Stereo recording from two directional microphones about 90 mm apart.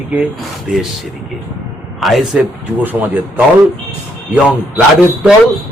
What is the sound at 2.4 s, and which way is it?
Speech, 20° right (ahead or behind).